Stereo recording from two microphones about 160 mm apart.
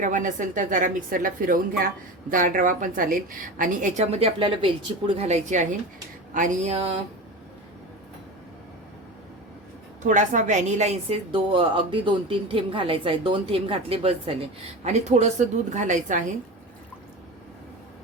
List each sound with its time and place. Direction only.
0.0 s a woman's voice: 50° right (ahead or behind)
6.7 s a woman's voice: 35° right (ahead or behind)
10.0 s a woman's voice: 50° right (ahead or behind)